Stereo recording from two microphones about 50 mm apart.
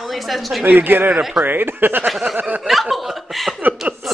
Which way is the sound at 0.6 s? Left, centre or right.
Right.